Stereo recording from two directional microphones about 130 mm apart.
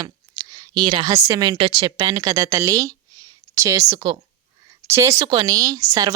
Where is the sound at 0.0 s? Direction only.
30° right (ahead or behind).